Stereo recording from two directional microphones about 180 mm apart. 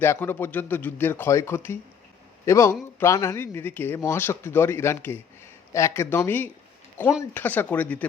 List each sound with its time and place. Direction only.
0.0 s speech: 10° left (ahead or behind)